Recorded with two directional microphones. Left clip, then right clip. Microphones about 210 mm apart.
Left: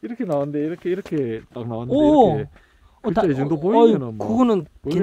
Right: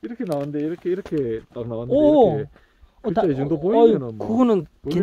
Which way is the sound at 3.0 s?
25° left (ahead or behind).